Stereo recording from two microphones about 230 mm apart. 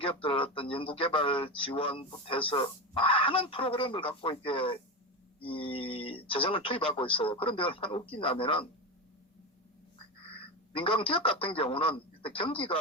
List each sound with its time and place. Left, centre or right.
0.0 s speech: left
10.2 s a man's voice: left